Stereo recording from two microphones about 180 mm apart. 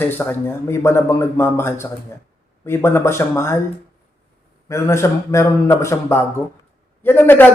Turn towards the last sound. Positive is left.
turn(degrees=10)  # may be behind; listen again after turning